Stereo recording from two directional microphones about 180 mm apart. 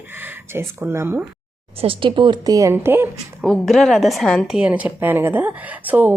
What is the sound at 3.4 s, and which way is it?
A woman's voice, centre (ahead or behind).